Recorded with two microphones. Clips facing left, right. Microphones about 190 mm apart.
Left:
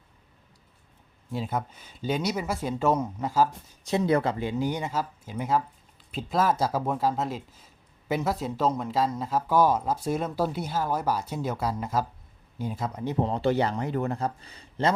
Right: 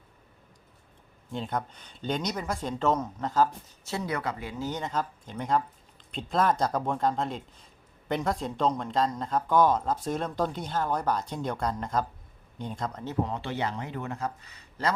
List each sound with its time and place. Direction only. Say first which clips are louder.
1.3 s speech: left 2 dB; 5° left (ahead or behind)
3.9 s speech: left 8 dB; 25° left (ahead or behind); by 13.1 s 10° left (ahead or behind)
13.2 s speech: left 7 dB; 35° left (ahead or behind)